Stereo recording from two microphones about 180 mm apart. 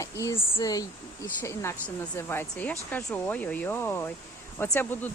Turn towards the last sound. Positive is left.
turn(degrees=10)  # may be behind; listen again after turning